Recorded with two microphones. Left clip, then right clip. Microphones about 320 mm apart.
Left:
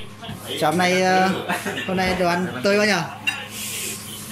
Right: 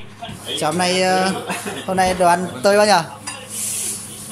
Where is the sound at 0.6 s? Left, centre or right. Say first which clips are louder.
Right 1 dB; centre.